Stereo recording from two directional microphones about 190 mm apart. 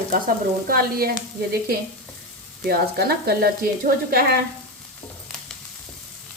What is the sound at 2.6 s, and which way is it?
Speech, 55° right (ahead or behind).